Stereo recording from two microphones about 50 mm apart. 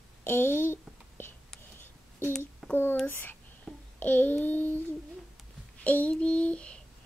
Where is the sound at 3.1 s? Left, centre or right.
Left.